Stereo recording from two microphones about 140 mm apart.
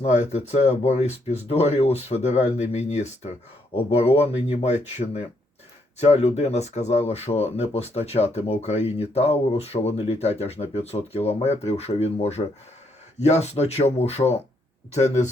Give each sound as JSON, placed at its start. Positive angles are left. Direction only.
{"t": 0.0, "sound": "speech", "side_deg": 50}